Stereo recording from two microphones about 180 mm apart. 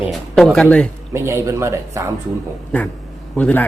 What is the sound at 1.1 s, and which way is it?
Speech, 15° right (ahead or behind).